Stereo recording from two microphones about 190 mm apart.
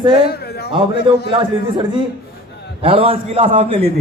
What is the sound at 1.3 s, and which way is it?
A man's voice, 25° right (ahead or behind).